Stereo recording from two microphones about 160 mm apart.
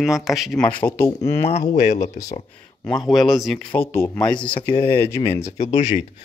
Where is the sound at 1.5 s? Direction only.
45° left (ahead or behind).